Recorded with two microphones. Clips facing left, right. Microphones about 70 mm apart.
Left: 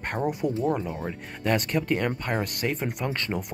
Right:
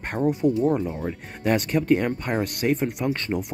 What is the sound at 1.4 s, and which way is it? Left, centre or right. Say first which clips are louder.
Speech: right 3 dB; centre.